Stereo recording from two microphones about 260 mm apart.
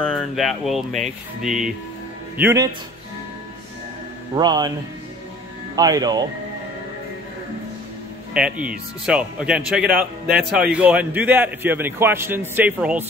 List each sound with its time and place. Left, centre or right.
0.0 s a man's voice: centre
4.4 s a man's voice: centre
5.8 s a man's voice: centre
8.3 s a man's voice: centre